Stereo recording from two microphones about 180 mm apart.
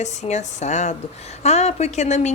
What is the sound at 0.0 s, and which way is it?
Speech, 40° left (ahead or behind).